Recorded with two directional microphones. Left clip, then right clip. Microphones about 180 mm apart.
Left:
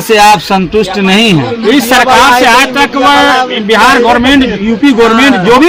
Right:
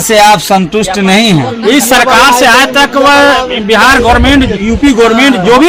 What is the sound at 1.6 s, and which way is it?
A man's voice, centre (ahead or behind).